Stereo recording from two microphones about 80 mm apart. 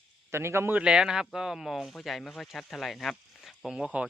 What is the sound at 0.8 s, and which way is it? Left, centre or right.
Speech, centre.